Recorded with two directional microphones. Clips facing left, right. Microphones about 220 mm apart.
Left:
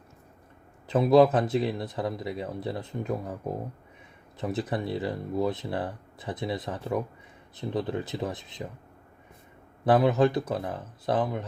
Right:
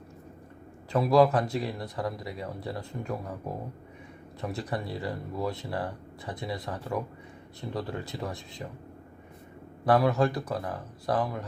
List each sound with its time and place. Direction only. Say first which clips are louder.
0.9 s speech: left 3 dB; 20° left (ahead or behind)
4.4 s speech: left 4 dB; 20° left (ahead or behind)
9.8 s speech: left 2 dB; 20° left (ahead or behind)